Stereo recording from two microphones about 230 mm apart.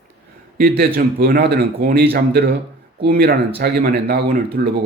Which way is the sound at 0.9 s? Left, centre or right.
Right.